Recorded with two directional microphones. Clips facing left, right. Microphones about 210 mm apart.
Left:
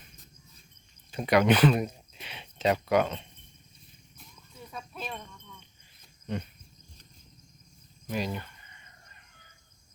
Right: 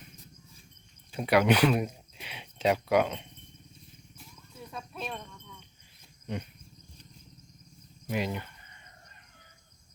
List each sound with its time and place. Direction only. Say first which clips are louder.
1.1 s speech: left 1 dB; 5° right (ahead or behind)
4.2 s a sound: right 1 dB; 5° right (ahead or behind)
8.1 s speech: right 1 dB; 20° right (ahead or behind)